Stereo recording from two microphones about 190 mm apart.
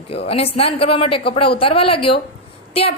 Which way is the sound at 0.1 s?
30° left (ahead or behind).